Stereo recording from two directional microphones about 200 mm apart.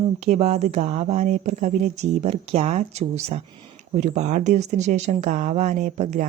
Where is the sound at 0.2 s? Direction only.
35° right (ahead or behind).